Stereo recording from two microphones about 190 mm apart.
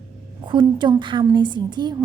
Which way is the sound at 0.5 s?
25° right (ahead or behind).